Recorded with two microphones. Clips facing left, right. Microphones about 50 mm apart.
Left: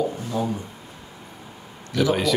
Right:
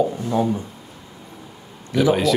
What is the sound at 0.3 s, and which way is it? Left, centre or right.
Speech, right.